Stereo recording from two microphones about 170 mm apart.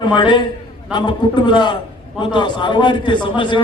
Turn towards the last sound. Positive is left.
turn(degrees=30)  # may be behind; listen again after turning